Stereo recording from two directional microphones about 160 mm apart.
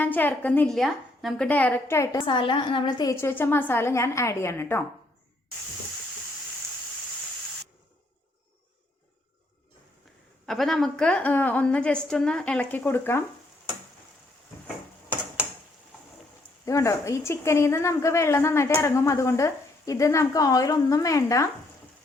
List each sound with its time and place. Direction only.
0.0 s a woman's voice: 10° left (ahead or behind)
1.5 s a woman's voice: 10° left (ahead or behind)
2.1 s a woman's voice: 30° left (ahead or behind); by 4.9 s 15° left (ahead or behind)
10.4 s a woman's voice: centre (ahead or behind)
16.6 s a woman's voice: 20° left (ahead or behind)